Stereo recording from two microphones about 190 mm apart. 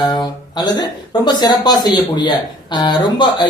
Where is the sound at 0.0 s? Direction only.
20° left (ahead or behind).